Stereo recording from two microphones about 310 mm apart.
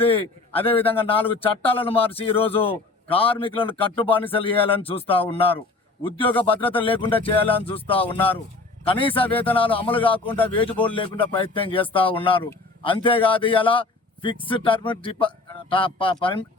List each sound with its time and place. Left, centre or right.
0.0 s a man's voice: centre
10.2 s speech: centre
10.6 s a man's voice: centre